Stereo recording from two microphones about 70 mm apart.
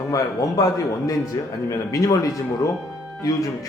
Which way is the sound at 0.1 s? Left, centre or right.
Left.